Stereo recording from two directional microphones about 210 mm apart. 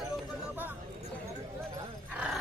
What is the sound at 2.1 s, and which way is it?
Dog, 5° right (ahead or behind).